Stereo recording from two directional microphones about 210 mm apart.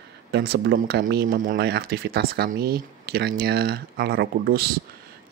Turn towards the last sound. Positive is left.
turn(degrees=-45)  # may be behind; listen again after turning